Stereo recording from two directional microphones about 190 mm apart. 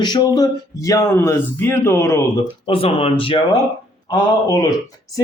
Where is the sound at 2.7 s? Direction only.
30° left (ahead or behind).